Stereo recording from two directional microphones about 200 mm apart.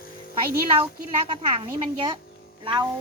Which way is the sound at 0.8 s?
25° right (ahead or behind).